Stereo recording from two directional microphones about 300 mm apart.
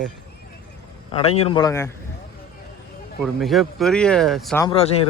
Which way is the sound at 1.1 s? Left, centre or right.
Centre.